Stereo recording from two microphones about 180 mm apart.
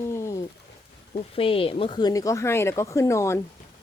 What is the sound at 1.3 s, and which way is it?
Speech, 30° left (ahead or behind).